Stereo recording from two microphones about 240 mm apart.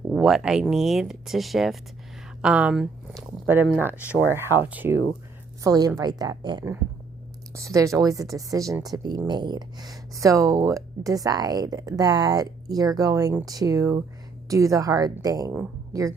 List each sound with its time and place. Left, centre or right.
0.1 s speech: centre